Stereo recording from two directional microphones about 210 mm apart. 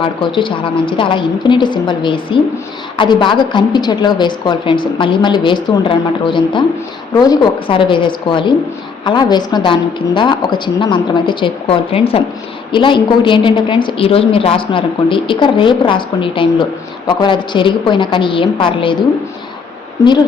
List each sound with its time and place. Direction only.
0.0 s a woman's voice: 25° left (ahead or behind)